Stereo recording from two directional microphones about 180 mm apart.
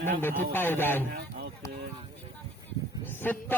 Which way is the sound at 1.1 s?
65° right (ahead or behind).